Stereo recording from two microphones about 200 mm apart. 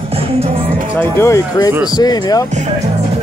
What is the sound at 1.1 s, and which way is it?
Speech, 15° left (ahead or behind).